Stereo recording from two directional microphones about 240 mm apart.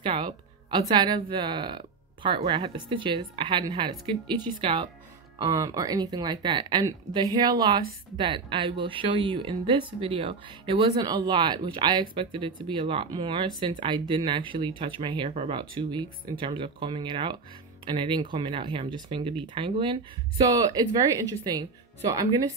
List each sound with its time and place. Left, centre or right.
0.0 s speech: centre